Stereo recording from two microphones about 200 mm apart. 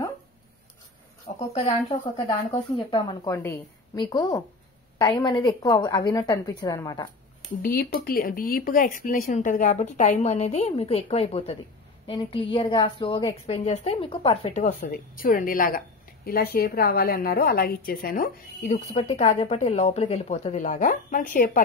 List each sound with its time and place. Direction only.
1.5 s a woman's voice: 30° left (ahead or behind)
3.4 s a woman's voice: 10° left (ahead or behind)
7.6 s a woman's voice: 50° left (ahead or behind)